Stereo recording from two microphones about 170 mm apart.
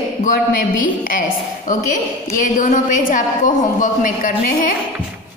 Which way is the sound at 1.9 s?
50° left (ahead or behind).